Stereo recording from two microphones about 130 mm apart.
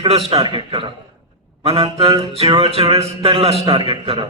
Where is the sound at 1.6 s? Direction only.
50° right (ahead or behind).